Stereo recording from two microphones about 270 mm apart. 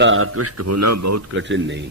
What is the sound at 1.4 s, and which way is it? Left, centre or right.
Speech, right.